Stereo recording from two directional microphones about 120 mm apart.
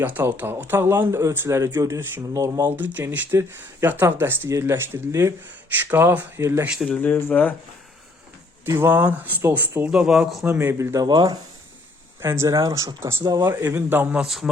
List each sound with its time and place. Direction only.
0.0 s speech: 15° right (ahead or behind)
2.6 s speech: 15° right (ahead or behind)
6.8 s speech: 10° left (ahead or behind)
8.6 s speech: 20° right (ahead or behind); by 10.5 s 5° right (ahead or behind)
10.5 s speech: 20° right (ahead or behind)
11.1 s speech: 35° right (ahead or behind)
12.2 s speech: 20° right (ahead or behind)
14.3 s speech: centre (ahead or behind)